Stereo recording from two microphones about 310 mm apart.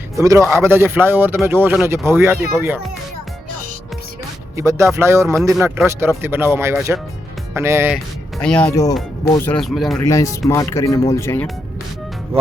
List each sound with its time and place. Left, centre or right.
0.2 s speech: centre
4.5 s speech: centre
8.4 s speech: centre
12.3 s music: centre